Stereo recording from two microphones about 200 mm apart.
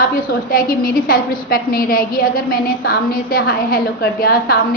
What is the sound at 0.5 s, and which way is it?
A woman's voice, 45° left (ahead or behind).